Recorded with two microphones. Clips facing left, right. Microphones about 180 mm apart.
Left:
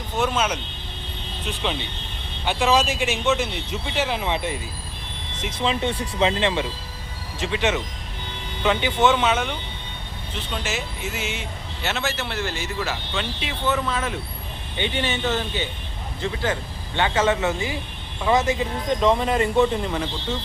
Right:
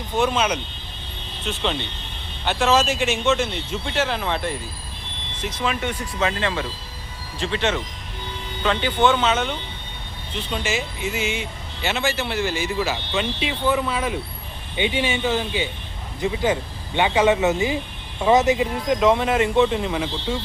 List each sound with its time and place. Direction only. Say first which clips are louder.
0.2 s speech: right 2 dB; 5° left (ahead or behind)
1.6 s speech: right 2 dB; 5° left (ahead or behind)
5.6 s speech: left 2 dB; 30° left (ahead or behind); by 18.7 s 20° right (ahead or behind)
18.9 s speech: right 1 dB; 5° right (ahead or behind)